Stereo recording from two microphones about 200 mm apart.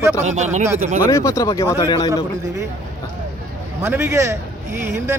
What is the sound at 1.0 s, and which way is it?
Speech, 15° left (ahead or behind).